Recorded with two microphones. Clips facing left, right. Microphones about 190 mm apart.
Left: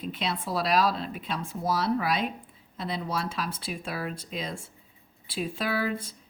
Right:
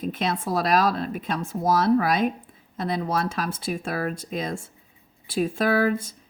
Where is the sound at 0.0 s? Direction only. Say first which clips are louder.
Right 5 dB; 45° right (ahead or behind).